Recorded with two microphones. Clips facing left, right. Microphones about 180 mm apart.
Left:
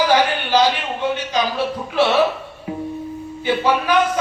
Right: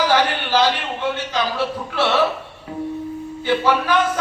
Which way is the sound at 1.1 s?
15° left (ahead or behind).